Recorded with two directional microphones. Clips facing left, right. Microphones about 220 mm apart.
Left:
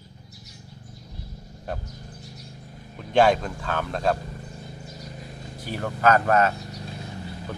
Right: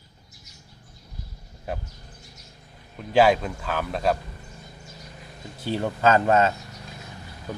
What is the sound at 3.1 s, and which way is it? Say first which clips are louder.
Speech: right 1 dB; 5° right (ahead or behind).